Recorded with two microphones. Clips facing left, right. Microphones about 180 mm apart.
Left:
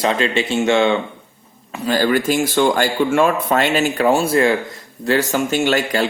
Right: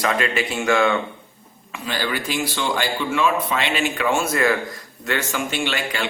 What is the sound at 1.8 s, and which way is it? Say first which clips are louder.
Speech: left 9 dB; 45° left (ahead or behind).